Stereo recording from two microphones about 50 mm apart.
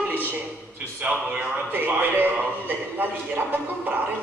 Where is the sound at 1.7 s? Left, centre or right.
Right.